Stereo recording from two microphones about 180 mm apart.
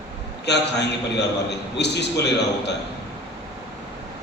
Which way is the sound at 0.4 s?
70° left (ahead or behind).